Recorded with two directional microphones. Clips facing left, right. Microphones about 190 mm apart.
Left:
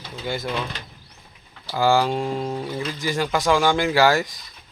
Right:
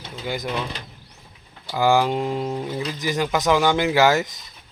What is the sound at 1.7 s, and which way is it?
Speech, 15° right (ahead or behind).